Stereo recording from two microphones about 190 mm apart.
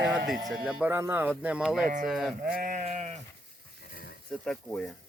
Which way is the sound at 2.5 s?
45° right (ahead or behind).